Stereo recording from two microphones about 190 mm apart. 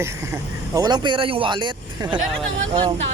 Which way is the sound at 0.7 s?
20° right (ahead or behind).